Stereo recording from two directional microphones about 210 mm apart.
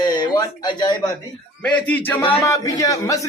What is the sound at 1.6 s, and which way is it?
Speech, 5° left (ahead or behind).